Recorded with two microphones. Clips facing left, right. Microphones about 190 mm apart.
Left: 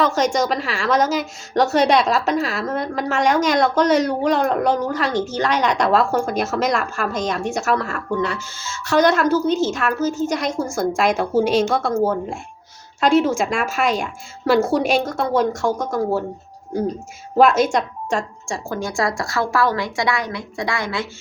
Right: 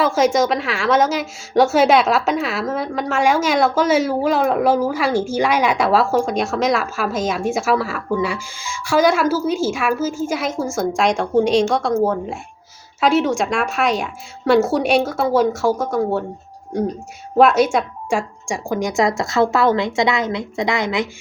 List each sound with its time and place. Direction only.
0.0 s a woman's voice: 5° right (ahead or behind)
17.3 s speech: centre (ahead or behind); by 21.1 s 20° right (ahead or behind)